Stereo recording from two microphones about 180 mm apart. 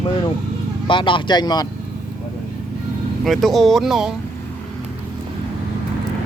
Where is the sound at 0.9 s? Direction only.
25° left (ahead or behind).